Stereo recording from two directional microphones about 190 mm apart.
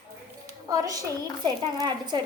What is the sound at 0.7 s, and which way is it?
A woman's voice, 20° right (ahead or behind).